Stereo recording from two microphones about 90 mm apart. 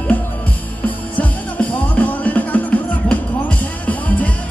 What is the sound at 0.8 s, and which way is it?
Music, 15° left (ahead or behind).